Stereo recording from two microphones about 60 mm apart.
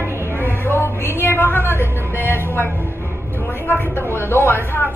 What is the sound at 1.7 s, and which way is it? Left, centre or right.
Speech, left.